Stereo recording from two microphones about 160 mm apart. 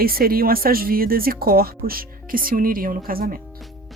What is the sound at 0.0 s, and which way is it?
Speech, 70° right (ahead or behind).